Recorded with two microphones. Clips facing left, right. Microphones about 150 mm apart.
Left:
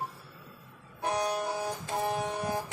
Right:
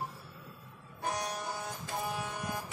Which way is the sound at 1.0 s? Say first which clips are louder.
Left 6 dB; 65° left (ahead or behind).